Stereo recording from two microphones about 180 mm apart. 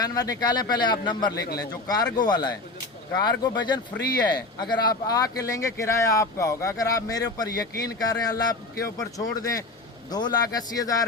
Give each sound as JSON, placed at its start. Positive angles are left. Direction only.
{"t": 0.0, "sound": "speech", "side_deg": 20}